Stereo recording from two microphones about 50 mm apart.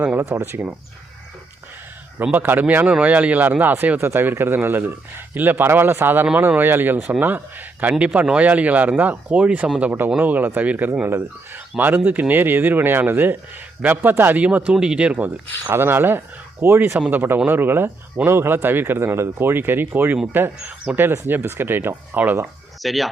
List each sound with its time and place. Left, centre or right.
0.2 s speech: right
2.3 s speech: right
11.0 s speech: right
14.4 s speech: right
15.7 s speech: right
16.6 s speech: right
17.1 s speech: right
20.6 s speech: right
21.2 s speech: right
22.8 s speech: centre